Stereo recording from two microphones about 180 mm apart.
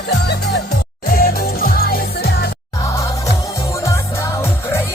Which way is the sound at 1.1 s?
55° left (ahead or behind).